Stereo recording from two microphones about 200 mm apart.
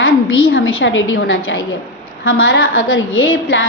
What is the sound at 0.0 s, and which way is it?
A woman's voice, 90° left.